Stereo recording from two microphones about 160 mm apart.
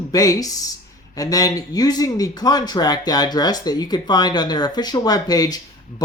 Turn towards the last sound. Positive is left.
turn(degrees=25)  # may be behind; listen again after turning